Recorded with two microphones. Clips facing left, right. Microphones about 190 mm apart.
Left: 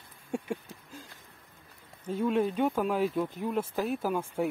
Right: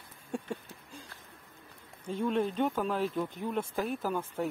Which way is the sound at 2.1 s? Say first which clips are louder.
Left 3 dB; 5° left (ahead or behind).